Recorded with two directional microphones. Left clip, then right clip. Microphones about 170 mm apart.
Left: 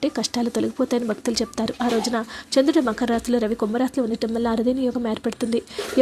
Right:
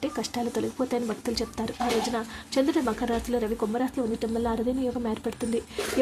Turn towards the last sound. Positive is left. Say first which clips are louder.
# left 5 dB
turn(degrees=25)  # may be behind; listen again after turning